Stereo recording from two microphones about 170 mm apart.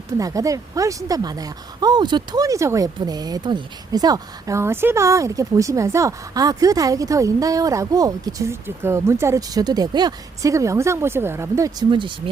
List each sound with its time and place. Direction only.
0.2 s speech: 20° right (ahead or behind)